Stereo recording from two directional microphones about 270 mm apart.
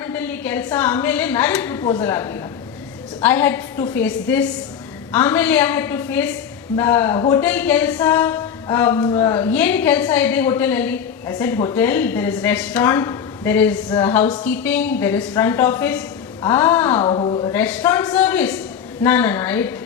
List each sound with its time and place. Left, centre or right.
0.0 s a woman's voice: centre
17.1 s a woman's voice: centre
17.5 s a woman's voice: centre